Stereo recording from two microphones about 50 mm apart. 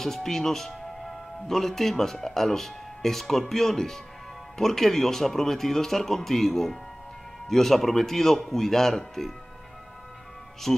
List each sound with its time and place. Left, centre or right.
0.0 s speech: centre